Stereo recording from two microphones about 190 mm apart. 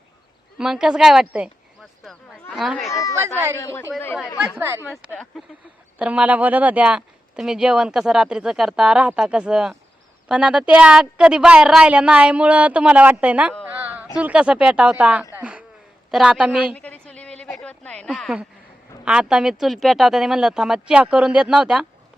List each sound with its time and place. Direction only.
0.6 s a woman's voice: 5° right (ahead or behind)
2.9 s speech: 15° left (ahead or behind)
3.2 s a woman's voice: 15° right (ahead or behind)
3.6 s speech: 15° left (ahead or behind)
4.4 s a woman's voice: 10° right (ahead or behind)
4.9 s a woman's voice: centre (ahead or behind)
13.7 s a sound: 10° right (ahead or behind)
14.2 s speech: 5° right (ahead or behind)
15.4 s a sound: 5° right (ahead or behind)
16.1 s speech: 5° right (ahead or behind)
16.7 s a sound: 5° left (ahead or behind)
17.6 s speech: 5° left (ahead or behind)